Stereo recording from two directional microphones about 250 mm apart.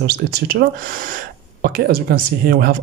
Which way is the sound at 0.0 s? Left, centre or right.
Right.